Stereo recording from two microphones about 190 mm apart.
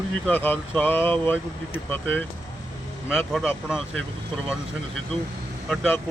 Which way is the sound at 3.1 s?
Centre (ahead or behind).